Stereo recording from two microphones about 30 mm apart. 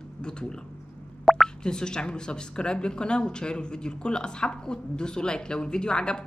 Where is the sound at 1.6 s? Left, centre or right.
Left.